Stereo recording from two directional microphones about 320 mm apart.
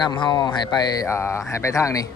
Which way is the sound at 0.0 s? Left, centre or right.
Centre.